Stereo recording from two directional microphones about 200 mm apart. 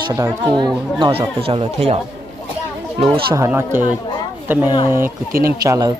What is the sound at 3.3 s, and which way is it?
Speech, 15° right (ahead or behind).